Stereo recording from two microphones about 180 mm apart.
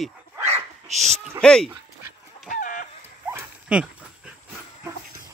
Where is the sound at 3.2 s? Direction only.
10° right (ahead or behind).